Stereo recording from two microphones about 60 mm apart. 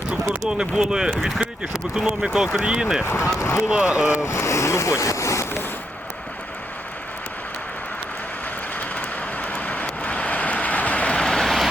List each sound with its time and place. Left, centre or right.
0.4 s speech: centre
3.0 s speech: left
3.7 s speech: centre
4.2 s boat: left
8.8 s vehicle: left; by 11.7 s centre